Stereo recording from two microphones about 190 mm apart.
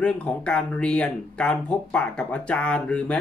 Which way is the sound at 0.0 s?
5° left (ahead or behind).